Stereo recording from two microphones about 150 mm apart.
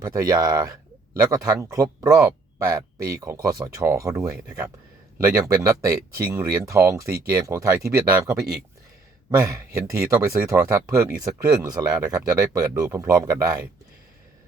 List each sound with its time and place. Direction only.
0.0 s speech: 25° right (ahead or behind)
9.4 s speech: 20° right (ahead or behind)